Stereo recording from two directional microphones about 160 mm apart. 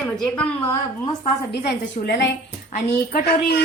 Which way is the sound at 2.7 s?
75° left (ahead or behind).